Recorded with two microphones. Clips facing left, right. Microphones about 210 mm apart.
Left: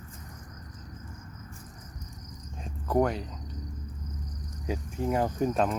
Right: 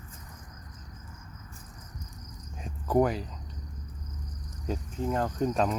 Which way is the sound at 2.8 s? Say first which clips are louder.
Right 1 dB; centre (ahead or behind).